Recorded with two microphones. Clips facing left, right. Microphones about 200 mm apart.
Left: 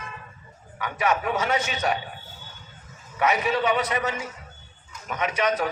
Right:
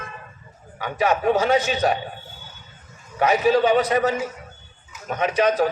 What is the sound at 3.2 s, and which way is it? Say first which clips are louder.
A man's voice: right 6 dB; 35° right (ahead or behind).